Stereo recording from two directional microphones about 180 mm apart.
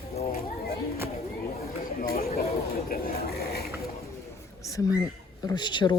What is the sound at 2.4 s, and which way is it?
Speech, 55° left (ahead or behind).